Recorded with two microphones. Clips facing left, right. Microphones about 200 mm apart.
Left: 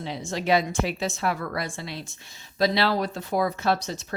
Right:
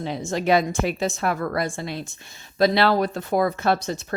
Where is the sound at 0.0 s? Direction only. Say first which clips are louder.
Right 5 dB; 50° right (ahead or behind).